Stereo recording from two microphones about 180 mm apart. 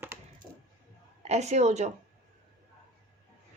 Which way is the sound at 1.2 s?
40° right (ahead or behind).